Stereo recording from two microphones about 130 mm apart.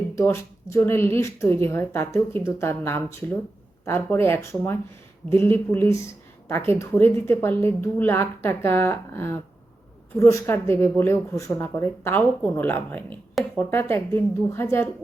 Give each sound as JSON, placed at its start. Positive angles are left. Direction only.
{"t": 0.2, "sound": "a woman's voice", "side_deg": 20}